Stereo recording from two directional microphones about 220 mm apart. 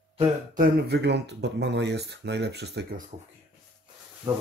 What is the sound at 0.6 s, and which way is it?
Speech, 50° right (ahead or behind).